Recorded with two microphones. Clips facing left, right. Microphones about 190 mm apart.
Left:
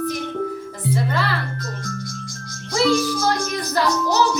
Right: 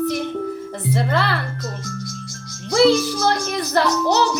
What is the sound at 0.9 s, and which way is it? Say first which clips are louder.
Music: right 2 dB; 65° right (ahead or behind).